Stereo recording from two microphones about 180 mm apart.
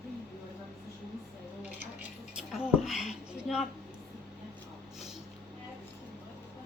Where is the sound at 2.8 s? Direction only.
5° right (ahead or behind).